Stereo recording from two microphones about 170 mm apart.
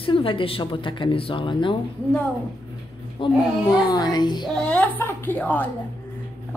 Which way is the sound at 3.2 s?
30° left (ahead or behind).